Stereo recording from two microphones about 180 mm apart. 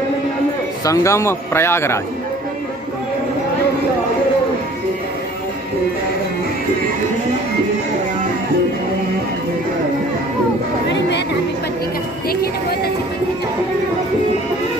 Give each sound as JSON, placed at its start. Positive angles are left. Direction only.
{"t": 0.8, "sound": "speech", "side_deg": 15}
{"t": 10.9, "sound": "a sound", "side_deg": 75}
{"t": 12.3, "sound": "music", "side_deg": 60}